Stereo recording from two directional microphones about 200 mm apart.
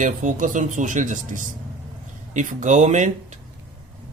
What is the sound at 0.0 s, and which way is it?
Speech, 40° right (ahead or behind).